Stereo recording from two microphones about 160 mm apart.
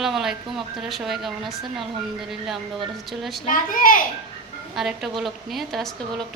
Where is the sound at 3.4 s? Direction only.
60° left (ahead or behind).